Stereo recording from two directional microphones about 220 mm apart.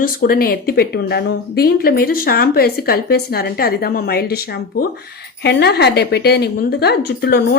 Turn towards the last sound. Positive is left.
turn(degrees=45)  # may be behind; listen again after turning